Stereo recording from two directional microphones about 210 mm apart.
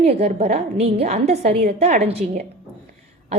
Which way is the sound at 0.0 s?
30° right (ahead or behind).